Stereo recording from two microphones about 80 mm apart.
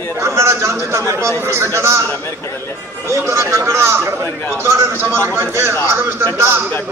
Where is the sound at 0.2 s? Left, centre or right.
Right.